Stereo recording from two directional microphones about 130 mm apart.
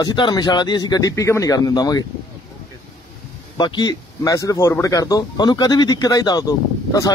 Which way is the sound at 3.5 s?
35° left (ahead or behind).